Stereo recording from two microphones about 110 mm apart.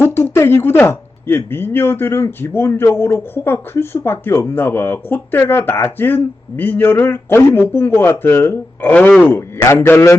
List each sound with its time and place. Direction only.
0.0 s speech: 20° left (ahead or behind)